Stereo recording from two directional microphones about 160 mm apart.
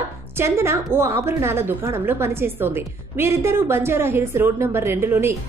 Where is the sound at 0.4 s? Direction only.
15° right (ahead or behind).